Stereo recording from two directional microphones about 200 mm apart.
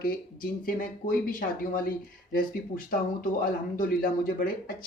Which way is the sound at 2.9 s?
45° left (ahead or behind).